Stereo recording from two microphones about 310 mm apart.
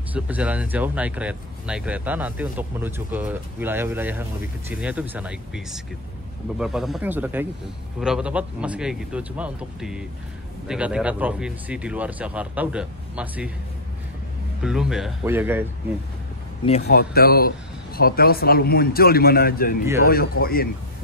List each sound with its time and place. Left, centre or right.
0.1 s speech: centre
14.6 s speech: centre
16.8 s a man's voice: left